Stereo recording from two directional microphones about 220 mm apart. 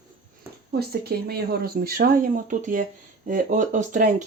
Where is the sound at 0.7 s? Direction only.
45° right (ahead or behind).